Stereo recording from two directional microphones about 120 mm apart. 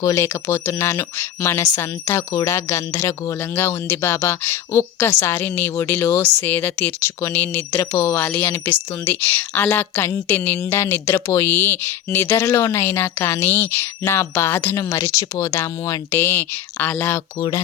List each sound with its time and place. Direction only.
0.0 s speech: 25° left (ahead or behind)